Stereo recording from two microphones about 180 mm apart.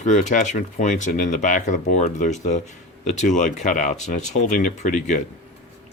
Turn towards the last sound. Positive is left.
turn(degrees=45)  # may be behind; listen again after turning